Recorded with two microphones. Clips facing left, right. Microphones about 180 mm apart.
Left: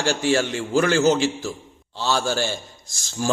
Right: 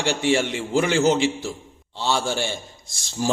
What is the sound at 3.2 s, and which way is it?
Speech, 30° right (ahead or behind).